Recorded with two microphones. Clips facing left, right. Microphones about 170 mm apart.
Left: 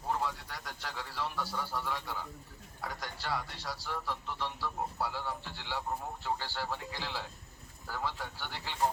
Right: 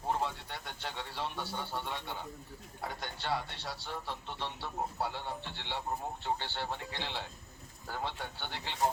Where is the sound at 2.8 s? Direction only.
25° right (ahead or behind).